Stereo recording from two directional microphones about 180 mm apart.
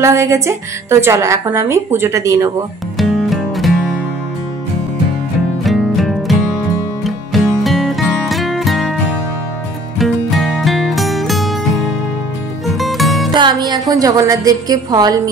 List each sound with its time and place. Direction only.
0.0 s speech: 15° right (ahead or behind)
3.0 s music: centre (ahead or behind)
5.6 s music: centre (ahead or behind)
9.9 s music: centre (ahead or behind)
12.7 s music: centre (ahead or behind)
13.3 s a woman's voice: 25° right (ahead or behind)